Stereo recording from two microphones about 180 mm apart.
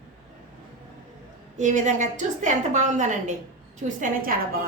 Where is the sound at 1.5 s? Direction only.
45° right (ahead or behind).